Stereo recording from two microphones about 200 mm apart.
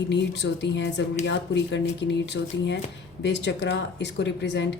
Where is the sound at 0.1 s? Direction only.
60° left (ahead or behind).